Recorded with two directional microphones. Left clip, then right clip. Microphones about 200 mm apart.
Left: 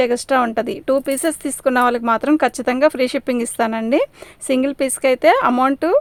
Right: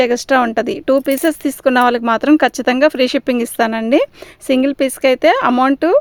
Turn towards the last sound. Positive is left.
turn(degrees=-30)  # may be behind; listen again after turning